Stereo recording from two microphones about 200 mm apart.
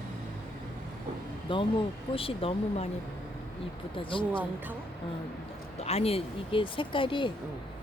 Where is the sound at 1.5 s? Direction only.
25° left (ahead or behind).